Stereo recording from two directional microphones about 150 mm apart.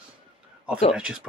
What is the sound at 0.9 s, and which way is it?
Speech, 5° right (ahead or behind).